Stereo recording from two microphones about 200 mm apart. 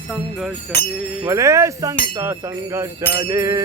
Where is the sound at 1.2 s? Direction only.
15° right (ahead or behind).